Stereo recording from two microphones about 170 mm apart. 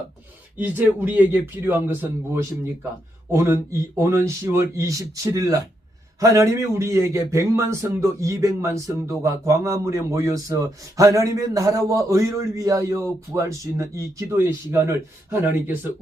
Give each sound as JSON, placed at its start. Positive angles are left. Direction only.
{"t": 0.6, "sound": "a man's voice", "side_deg": -10}